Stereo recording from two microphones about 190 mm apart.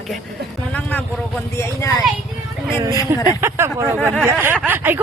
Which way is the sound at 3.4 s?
15° right (ahead or behind).